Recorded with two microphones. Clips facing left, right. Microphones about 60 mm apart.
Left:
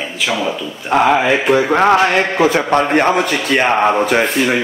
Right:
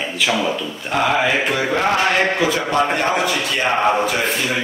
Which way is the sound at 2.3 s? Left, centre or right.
Left.